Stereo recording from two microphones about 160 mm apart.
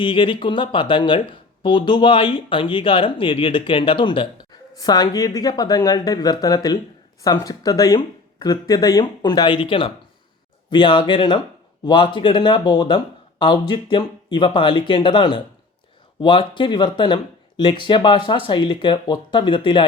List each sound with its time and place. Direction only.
0.0 s speech: 30° left (ahead or behind)